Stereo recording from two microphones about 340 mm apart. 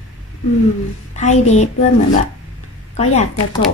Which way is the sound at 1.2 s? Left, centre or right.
Centre.